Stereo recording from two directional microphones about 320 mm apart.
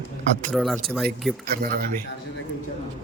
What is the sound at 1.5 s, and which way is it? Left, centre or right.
Speech, right.